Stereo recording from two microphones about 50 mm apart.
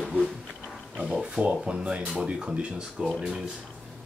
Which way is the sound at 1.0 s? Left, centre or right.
Centre.